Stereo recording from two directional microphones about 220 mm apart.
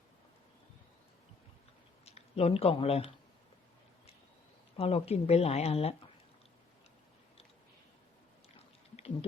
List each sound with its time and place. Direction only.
2.0 s speech: 30° left (ahead or behind)
4.8 s a woman's voice: 25° left (ahead or behind)